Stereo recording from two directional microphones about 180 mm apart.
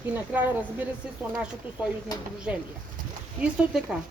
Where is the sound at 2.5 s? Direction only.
5° right (ahead or behind).